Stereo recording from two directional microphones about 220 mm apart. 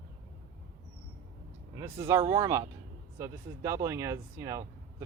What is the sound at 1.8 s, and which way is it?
Speech, 15° right (ahead or behind).